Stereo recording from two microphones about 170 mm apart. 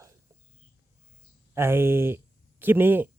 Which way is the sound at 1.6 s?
15° right (ahead or behind).